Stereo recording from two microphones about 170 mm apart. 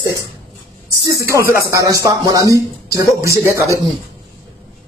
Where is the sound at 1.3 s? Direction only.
15° right (ahead or behind).